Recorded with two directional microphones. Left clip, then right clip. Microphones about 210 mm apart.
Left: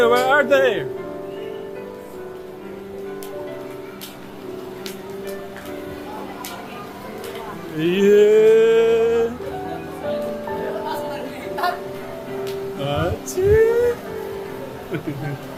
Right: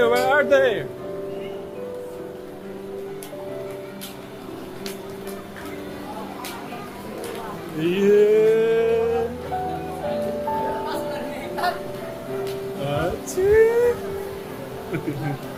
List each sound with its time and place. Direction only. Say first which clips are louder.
0.0 s speech: left 3 dB; 25° left (ahead or behind)
7.8 s mantra: left 3 dB; 30° left (ahead or behind)
12.9 s a sound: left 1 dB; 10° left (ahead or behind)